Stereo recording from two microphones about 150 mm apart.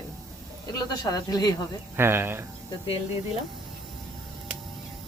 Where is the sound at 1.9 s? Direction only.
15° right (ahead or behind).